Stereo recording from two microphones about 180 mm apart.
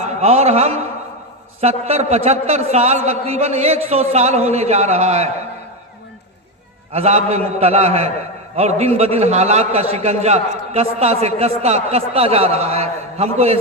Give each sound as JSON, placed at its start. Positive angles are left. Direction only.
{"t": 0.0, "sound": "a man's voice", "side_deg": -35}
{"t": 6.9, "sound": "a man's voice", "side_deg": -35}